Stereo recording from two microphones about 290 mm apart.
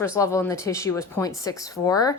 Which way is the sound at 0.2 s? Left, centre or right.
Centre.